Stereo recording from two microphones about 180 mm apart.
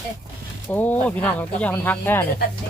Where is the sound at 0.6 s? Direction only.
10° left (ahead or behind).